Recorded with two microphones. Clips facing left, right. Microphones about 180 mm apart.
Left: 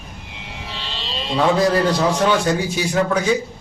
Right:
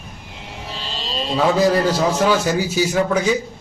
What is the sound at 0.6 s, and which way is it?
Vehicle, 40° right (ahead or behind).